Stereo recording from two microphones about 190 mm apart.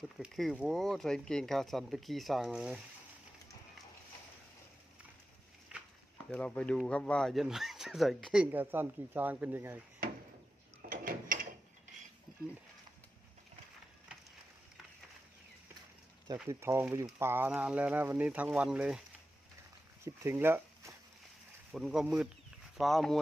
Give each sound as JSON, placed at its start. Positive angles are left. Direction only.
{"t": 0.2, "sound": "speech", "side_deg": -5}
{"t": 5.7, "sound": "a sound", "side_deg": -5}
{"t": 6.3, "sound": "speech", "side_deg": 5}
{"t": 10.8, "sound": "mechanisms", "side_deg": -45}
{"t": 16.2, "sound": "speech", "side_deg": -20}
{"t": 20.1, "sound": "speech", "side_deg": -15}